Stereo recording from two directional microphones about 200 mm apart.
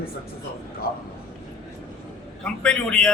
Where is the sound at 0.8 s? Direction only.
50° left (ahead or behind).